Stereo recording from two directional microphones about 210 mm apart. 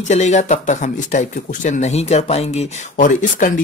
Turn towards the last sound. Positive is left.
turn(degrees=40)  # may be behind; listen again after turning